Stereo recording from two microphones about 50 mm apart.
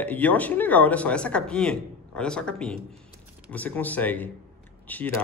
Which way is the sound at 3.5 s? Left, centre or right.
Left.